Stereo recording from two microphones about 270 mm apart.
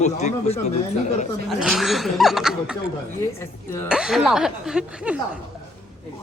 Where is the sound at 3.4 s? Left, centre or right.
Centre.